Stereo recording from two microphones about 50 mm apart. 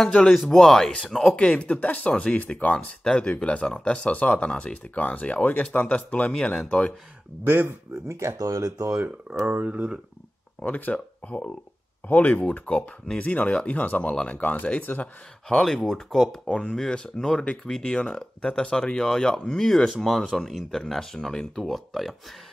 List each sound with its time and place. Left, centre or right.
0.0 s speech: centre
1.3 s speech: centre
2.7 s speech: centre
4.9 s speech: left
7.4 s speech: right
8.1 s speech: right
10.6 s speech: left
15.6 s speech: centre
17.9 s speech: centre